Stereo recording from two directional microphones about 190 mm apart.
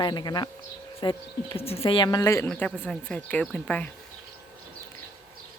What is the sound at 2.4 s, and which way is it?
Speech, 5° left (ahead or behind).